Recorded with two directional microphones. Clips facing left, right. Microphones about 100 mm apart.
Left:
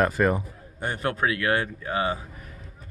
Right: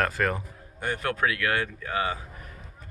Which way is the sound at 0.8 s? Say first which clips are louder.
Left 1 dB; 30° left (ahead or behind).